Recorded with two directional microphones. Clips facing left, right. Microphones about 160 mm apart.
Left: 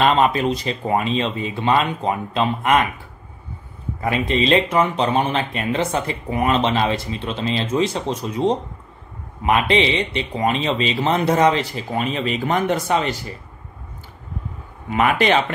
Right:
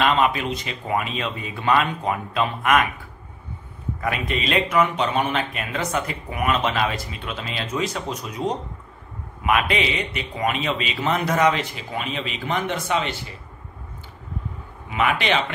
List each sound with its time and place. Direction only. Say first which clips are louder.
0.0 s speech: left 4 dB; 35° left (ahead or behind)
4.0 s speech: left 6 dB; 25° left (ahead or behind)
14.9 s speech: left 5 dB; 45° left (ahead or behind)